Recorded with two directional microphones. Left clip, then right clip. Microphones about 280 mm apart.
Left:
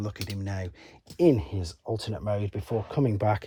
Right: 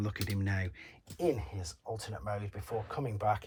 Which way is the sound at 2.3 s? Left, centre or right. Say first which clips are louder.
Left 8 dB; left.